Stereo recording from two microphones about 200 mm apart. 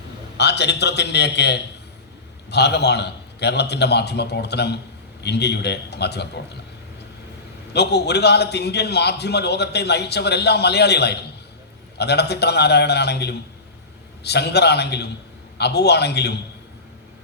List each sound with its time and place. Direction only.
0.3 s a man's voice: 60° left (ahead or behind)
7.7 s a man's voice: 55° left (ahead or behind)